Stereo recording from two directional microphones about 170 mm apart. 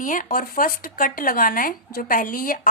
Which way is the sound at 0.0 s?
50° left (ahead or behind).